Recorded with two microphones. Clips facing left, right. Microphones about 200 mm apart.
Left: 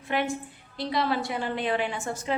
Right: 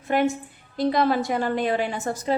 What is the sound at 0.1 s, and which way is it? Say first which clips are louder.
A woman's voice: right 6 dB; 45° right (ahead or behind).